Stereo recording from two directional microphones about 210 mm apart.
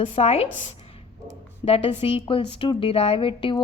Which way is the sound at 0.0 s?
30° left (ahead or behind).